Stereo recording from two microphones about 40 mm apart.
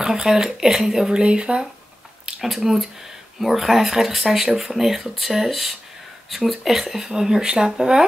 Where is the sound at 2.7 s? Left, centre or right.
Centre.